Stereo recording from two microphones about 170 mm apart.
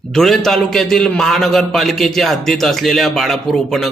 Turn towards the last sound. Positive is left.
turn(degrees=0)  # may be behind; listen again after turning